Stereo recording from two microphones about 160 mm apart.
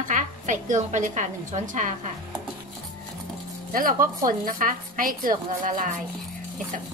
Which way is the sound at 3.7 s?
60° right (ahead or behind).